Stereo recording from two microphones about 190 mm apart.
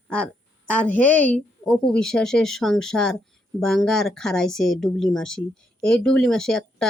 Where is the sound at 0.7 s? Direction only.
5° left (ahead or behind).